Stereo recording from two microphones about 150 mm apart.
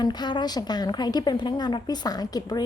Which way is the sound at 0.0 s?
30° left (ahead or behind).